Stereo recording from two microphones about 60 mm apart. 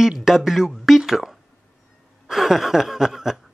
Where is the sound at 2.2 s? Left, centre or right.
Centre.